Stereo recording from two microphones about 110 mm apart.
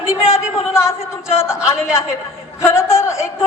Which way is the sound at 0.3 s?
25° left (ahead or behind).